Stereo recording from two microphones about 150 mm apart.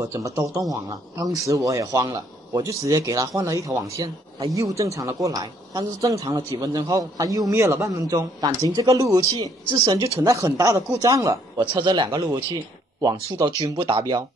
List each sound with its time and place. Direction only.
0.0 s a man's voice: 20° right (ahead or behind)